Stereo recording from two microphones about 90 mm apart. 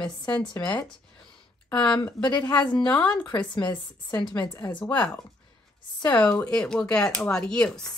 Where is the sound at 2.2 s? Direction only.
55° left (ahead or behind).